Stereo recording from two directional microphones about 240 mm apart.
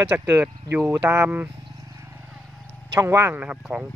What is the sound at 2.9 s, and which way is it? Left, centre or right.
Speech, centre.